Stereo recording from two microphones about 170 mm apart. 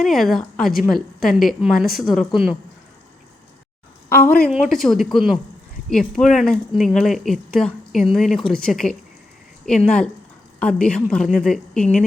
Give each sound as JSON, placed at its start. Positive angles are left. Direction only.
{"t": 0.0, "sound": "a woman's voice", "side_deg": 0}
{"t": 4.1, "sound": "a woman's voice", "side_deg": 60}
{"t": 4.7, "sound": "a woman's voice", "side_deg": 0}